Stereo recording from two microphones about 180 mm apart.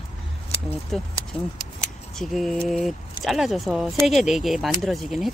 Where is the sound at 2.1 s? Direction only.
Centre (ahead or behind).